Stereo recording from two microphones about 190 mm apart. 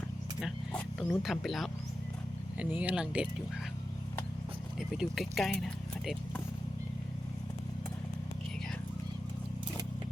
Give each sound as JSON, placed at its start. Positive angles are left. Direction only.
{"t": 0.4, "sound": "speech", "side_deg": 0}
{"t": 4.8, "sound": "speech", "side_deg": 0}